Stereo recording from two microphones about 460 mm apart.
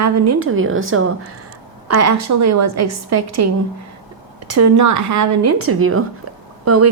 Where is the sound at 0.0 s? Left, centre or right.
Right.